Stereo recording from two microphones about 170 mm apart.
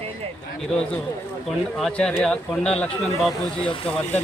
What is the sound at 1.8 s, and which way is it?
Speech, 5° left (ahead or behind).